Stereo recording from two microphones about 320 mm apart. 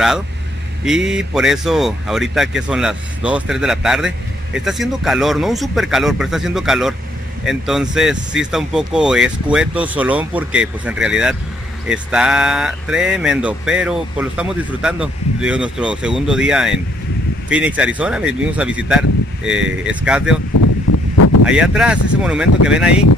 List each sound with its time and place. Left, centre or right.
0.8 s speech: centre
20.9 s a sound: left
21.5 s speech: centre